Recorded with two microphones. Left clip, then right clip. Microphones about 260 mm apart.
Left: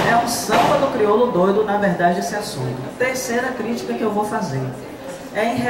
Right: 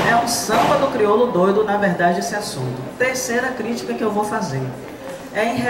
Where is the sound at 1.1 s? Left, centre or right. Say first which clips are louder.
Even; right.